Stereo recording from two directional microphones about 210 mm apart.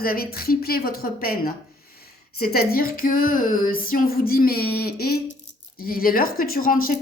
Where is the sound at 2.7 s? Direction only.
45° left (ahead or behind).